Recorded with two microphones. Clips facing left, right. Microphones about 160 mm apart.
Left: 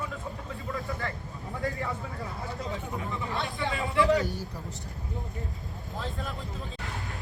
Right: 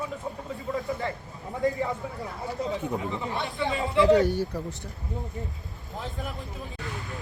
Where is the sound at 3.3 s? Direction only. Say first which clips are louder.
Right 2 dB; 20° right (ahead or behind).